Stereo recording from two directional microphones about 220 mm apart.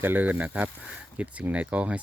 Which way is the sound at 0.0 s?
10° right (ahead or behind).